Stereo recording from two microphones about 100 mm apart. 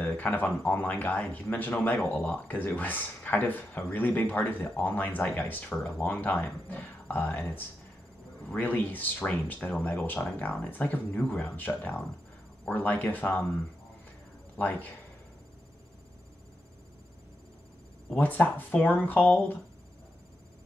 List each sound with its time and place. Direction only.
0.0 s speech: 15° left (ahead or behind)
14.6 s speech: 15° left (ahead or behind)
18.1 s speech: 20° left (ahead or behind)